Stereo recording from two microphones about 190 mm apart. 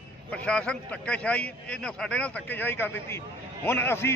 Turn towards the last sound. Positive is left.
turn(degrees=10)  # may be behind; listen again after turning